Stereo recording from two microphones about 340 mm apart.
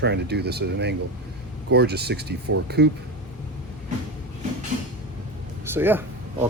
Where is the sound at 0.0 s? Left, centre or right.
Right.